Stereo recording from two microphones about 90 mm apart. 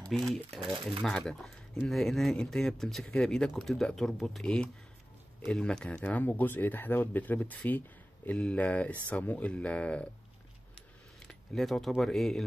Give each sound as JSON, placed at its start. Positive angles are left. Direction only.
{"t": 0.1, "sound": "speech", "side_deg": 0}
{"t": 11.2, "sound": "speech", "side_deg": 5}